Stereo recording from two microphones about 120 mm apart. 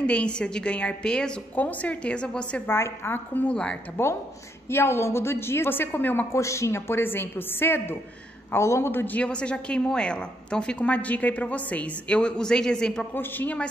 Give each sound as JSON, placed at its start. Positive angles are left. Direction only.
{"t": 0.0, "sound": "a woman's voice", "side_deg": 10}
{"t": 13.1, "sound": "a woman's voice", "side_deg": 15}